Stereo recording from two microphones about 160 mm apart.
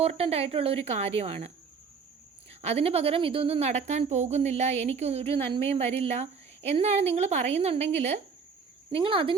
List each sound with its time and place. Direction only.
0.0 s a woman's voice: 40° right (ahead or behind)